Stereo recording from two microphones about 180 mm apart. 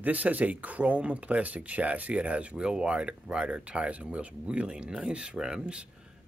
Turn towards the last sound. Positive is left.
turn(degrees=-5)  # may be behind; listen again after turning